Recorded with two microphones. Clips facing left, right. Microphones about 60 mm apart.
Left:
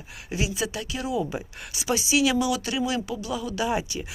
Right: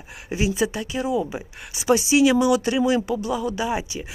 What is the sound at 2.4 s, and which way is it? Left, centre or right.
Speech, right.